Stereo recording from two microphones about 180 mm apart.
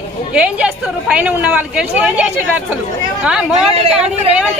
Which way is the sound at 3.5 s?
35° right (ahead or behind).